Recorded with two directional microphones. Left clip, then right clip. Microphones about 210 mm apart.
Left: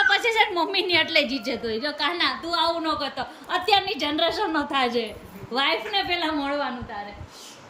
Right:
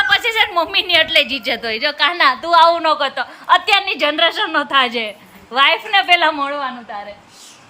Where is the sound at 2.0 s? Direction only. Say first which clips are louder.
Right 11 dB; 15° right (ahead or behind).